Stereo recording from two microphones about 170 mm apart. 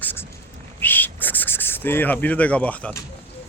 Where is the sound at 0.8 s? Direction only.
10° left (ahead or behind).